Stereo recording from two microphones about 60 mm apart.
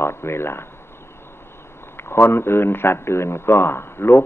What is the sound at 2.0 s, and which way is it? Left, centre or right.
A man's voice, left.